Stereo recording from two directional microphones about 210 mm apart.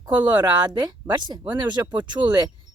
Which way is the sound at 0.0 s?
20° right (ahead or behind).